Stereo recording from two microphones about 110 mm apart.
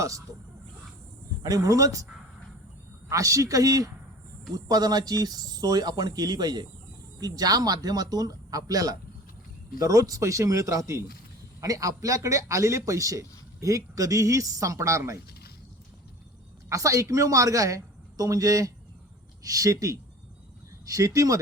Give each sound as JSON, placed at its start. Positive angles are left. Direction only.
{"t": 1.4, "sound": "speech", "side_deg": -35}
{"t": 3.1, "sound": "a man's voice", "side_deg": -30}
{"t": 16.6, "sound": "speech", "side_deg": -30}